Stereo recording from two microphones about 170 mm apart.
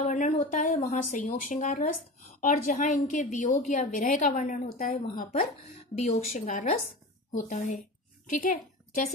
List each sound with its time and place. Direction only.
0.0 s a woman's voice: 45° left (ahead or behind)